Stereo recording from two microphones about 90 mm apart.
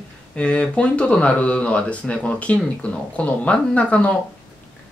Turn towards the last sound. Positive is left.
turn(degrees=15)  # may be behind; listen again after turning